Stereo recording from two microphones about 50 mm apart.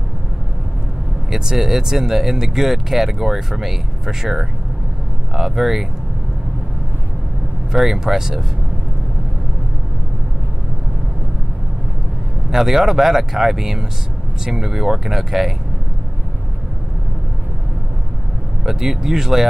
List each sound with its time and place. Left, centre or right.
1.3 s speech: centre
7.7 s speech: centre
12.4 s speech: centre
18.7 s speech: centre